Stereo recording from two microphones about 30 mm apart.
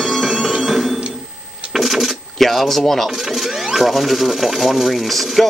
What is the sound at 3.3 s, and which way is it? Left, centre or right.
Speech, centre.